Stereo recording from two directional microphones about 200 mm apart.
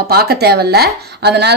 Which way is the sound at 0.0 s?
50° right (ahead or behind).